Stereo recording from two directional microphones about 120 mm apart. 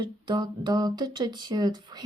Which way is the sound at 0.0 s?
40° right (ahead or behind).